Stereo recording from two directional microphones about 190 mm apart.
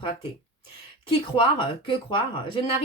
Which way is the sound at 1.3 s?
25° left (ahead or behind).